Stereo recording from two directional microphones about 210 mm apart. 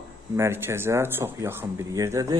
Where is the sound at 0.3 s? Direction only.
10° right (ahead or behind).